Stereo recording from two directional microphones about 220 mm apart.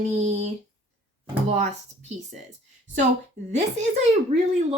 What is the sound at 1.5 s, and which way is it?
Speech, 30° right (ahead or behind).